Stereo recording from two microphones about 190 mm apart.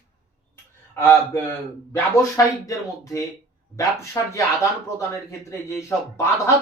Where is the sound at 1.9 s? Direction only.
15° left (ahead or behind).